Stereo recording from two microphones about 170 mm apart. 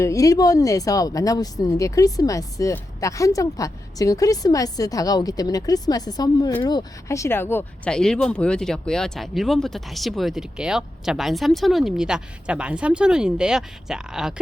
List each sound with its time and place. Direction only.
0.0 s a woman's voice: 20° left (ahead or behind); by 14.3 s 5° right (ahead or behind)